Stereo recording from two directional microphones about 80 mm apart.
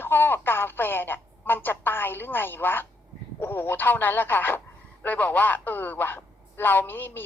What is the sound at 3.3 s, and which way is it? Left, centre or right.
Speech, left.